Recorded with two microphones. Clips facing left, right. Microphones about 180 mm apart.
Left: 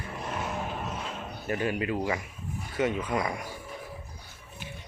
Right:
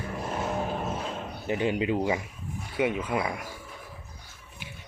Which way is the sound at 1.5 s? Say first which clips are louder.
Right 3 dB; 20° right (ahead or behind).